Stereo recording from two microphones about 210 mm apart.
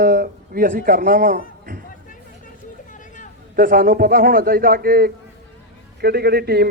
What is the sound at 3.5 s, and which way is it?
A man's voice, 45° right (ahead or behind).